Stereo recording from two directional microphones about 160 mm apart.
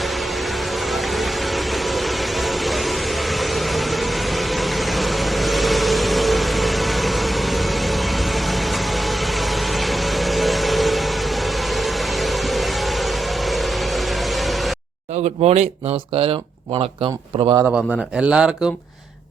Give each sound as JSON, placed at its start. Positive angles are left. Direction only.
{"t": 1.1, "sound": "vehicle", "side_deg": 0}
{"t": 9.7, "sound": "vehicle", "side_deg": 0}
{"t": 11.8, "sound": "music", "side_deg": 0}
{"t": 13.5, "sound": "vehicle", "side_deg": 0}
{"t": 15.2, "sound": "speech", "side_deg": -45}
{"t": 17.7, "sound": "speech", "side_deg": -5}